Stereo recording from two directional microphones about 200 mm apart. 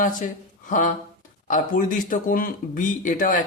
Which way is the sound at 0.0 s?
40° left (ahead or behind).